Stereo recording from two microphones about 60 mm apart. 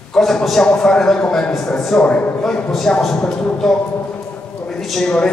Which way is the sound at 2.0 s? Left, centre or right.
Left.